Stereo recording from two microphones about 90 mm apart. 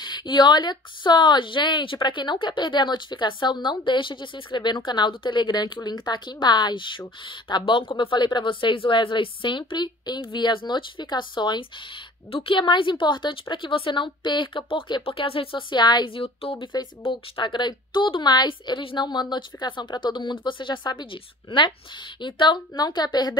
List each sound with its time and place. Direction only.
0.0 s speech: 60° left (ahead or behind)
12.3 s speech: 85° left
17.0 s a woman's voice: 70° left (ahead or behind); by 23.3 s 50° left (ahead or behind)